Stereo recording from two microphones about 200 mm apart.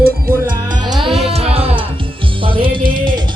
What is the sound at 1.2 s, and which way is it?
Music, 30° right (ahead or behind).